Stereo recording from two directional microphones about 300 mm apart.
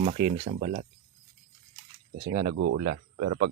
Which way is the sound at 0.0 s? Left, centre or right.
Right.